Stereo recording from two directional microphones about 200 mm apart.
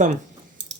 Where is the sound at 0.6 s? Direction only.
60° right (ahead or behind).